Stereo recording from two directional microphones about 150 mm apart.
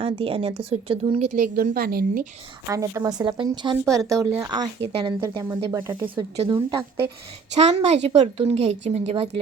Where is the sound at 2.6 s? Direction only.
20° right (ahead or behind).